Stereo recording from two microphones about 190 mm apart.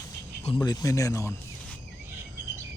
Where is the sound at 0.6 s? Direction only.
20° left (ahead or behind).